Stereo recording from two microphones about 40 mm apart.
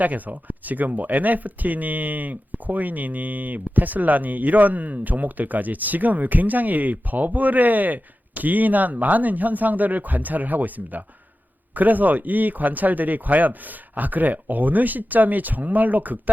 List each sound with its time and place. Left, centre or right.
0.0 s speech: right